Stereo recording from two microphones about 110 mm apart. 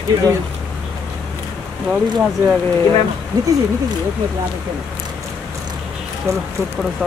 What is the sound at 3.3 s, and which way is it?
Speech, 40° right (ahead or behind).